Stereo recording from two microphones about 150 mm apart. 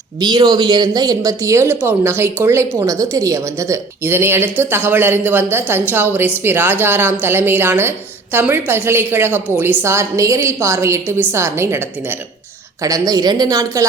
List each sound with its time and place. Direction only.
0.2 s speech: 30° right (ahead or behind)
12.8 s a woman's voice: 25° right (ahead or behind)